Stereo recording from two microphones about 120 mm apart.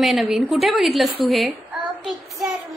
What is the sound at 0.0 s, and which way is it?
A woman's voice, centre (ahead or behind).